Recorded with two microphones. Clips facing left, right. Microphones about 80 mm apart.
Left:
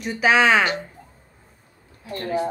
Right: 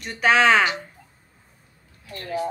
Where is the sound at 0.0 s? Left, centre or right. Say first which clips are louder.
Even; centre.